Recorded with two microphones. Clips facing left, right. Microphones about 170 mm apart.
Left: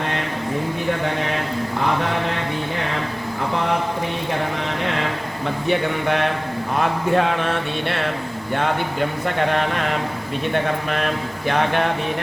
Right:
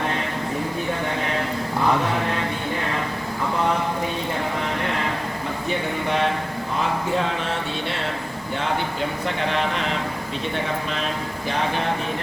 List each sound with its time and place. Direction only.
5.6 s speech: 60° left (ahead or behind)
9.2 s speech: 50° left (ahead or behind)